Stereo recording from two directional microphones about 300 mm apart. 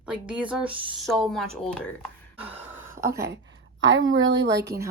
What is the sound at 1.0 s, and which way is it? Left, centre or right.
Speech, centre.